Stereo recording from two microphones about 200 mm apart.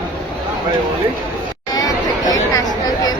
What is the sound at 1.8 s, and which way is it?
Chatter, 20° left (ahead or behind).